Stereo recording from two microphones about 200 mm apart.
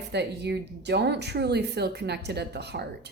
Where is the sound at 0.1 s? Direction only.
55° right (ahead or behind).